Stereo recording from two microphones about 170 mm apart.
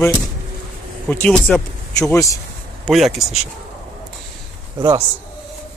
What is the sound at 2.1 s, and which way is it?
Speech, 20° left (ahead or behind).